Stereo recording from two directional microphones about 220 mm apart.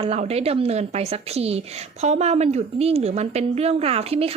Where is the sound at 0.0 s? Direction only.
30° right (ahead or behind).